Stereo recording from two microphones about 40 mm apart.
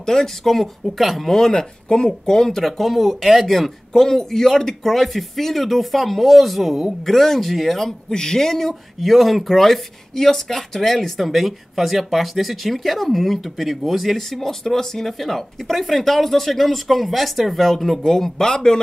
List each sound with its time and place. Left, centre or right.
0.0 s speech: centre
8.1 s speech: centre
18.1 s speech: centre